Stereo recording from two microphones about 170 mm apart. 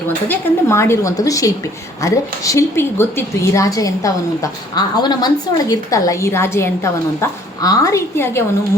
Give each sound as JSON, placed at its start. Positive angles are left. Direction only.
{"t": 0.3, "sound": "a woman's voice", "side_deg": 15}